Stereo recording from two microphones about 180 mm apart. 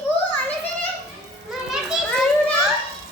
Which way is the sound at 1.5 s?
Centre (ahead or behind).